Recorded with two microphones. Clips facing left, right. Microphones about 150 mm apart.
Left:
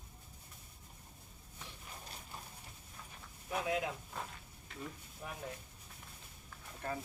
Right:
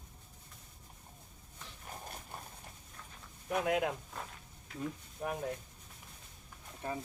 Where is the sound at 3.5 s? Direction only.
60° right (ahead or behind).